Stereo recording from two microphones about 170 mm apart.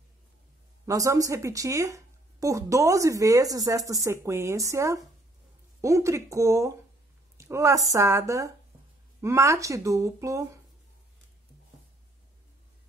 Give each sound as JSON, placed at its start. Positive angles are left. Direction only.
{"t": 0.8, "sound": "a woman's voice", "side_deg": -20}